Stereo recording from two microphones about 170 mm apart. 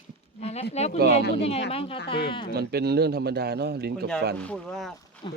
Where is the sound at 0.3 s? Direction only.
40° left (ahead or behind).